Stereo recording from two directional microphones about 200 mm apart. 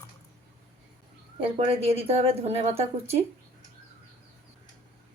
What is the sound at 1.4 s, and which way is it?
A woman's voice, 30° right (ahead or behind).